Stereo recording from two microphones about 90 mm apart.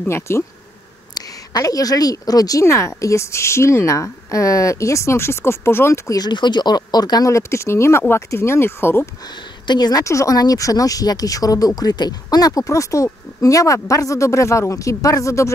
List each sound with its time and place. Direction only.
0.3 s speech: 30° left (ahead or behind)
1.1 s speech: 45° left (ahead or behind)
2.6 s speech: 35° left (ahead or behind)
6.1 s speech: 55° left (ahead or behind); by 9.1 s 25° left (ahead or behind)
9.7 s speech: 50° left (ahead or behind)
10.0 s speech: 40° left (ahead or behind)